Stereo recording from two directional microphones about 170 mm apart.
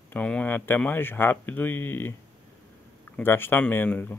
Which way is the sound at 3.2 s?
15° left (ahead or behind).